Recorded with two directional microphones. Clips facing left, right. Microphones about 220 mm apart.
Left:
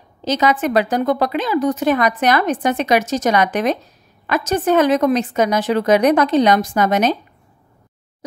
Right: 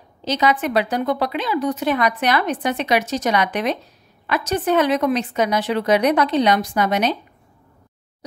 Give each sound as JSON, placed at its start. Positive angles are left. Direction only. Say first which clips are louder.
{"t": 0.2, "sound": "a woman's voice", "louder": "left 2 dB", "side_deg": 45}